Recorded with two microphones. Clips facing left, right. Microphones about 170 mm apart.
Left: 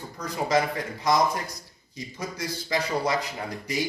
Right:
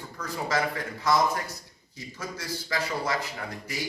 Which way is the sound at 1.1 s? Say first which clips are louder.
Left 1 dB; 15° left (ahead or behind).